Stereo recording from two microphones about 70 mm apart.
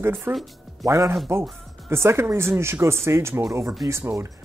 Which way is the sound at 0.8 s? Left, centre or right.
Right.